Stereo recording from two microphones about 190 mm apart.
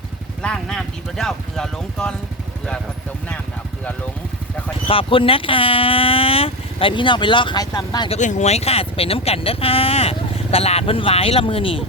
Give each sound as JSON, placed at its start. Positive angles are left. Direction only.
{"t": 0.4, "sound": "speech", "side_deg": 5}
{"t": 4.9, "sound": "speech", "side_deg": 30}
{"t": 8.2, "sound": "speech", "side_deg": 40}